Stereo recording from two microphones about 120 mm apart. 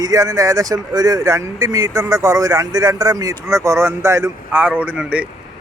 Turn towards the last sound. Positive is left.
turn(degrees=-10)  # may be behind; listen again after turning